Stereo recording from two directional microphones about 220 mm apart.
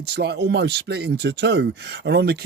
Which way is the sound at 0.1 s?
50° right (ahead or behind).